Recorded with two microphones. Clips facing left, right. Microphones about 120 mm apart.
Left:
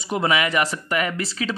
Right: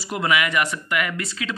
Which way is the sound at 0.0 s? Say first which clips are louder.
Left 1 dB; 30° left (ahead or behind).